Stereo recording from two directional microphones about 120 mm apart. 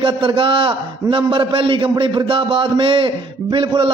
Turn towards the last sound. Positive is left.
turn(degrees=-45)  # may be behind; listen again after turning